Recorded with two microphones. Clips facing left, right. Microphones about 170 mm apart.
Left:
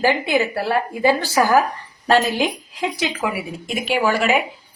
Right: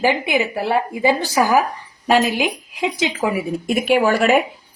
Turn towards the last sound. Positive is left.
turn(degrees=-45)  # may be behind; listen again after turning